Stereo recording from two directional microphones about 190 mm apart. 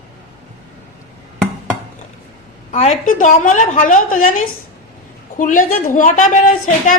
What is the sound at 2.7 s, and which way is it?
A woman's voice, 35° left (ahead or behind).